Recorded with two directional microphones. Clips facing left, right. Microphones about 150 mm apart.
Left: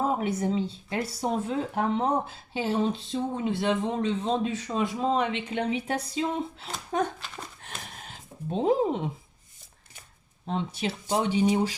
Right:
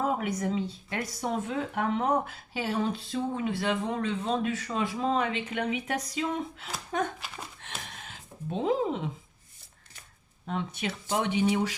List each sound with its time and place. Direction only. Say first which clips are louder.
0.0 s speech: left 2 dB; 30° left (ahead or behind)
7.6 s a sound: even; 35° left (ahead or behind)
8.5 s speech: left 3 dB; 35° left (ahead or behind)
10.4 s speech: left 3 dB; 30° left (ahead or behind)